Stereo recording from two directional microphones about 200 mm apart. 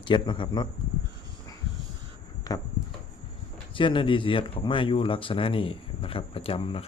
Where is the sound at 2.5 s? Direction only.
20° left (ahead or behind).